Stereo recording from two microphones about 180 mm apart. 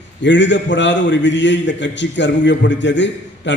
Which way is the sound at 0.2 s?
80° left.